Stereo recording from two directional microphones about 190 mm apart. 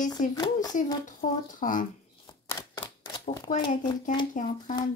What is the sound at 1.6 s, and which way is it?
Speech, 45° left (ahead or behind).